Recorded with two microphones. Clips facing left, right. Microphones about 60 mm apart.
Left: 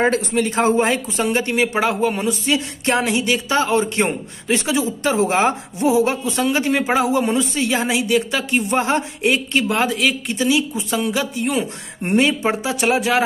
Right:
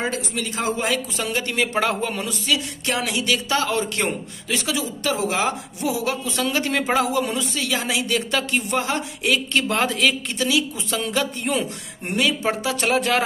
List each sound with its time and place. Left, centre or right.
0.0 s speech: left; by 2.1 s centre
2.1 s speech: left
6.7 s speech: centre
7.1 s speech: left
8.5 s speech: left
9.6 s speech: centre
10.4 s speech: centre
12.0 s speech: left